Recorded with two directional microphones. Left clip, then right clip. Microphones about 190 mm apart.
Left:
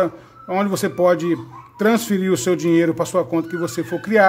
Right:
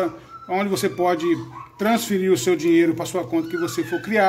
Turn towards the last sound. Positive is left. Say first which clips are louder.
# left 4 dB
turn(degrees=50)  # may be behind; listen again after turning